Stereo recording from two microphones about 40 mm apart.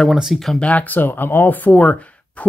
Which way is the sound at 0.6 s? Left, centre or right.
Left.